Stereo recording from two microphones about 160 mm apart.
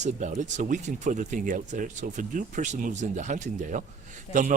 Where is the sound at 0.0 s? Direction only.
50° right (ahead or behind).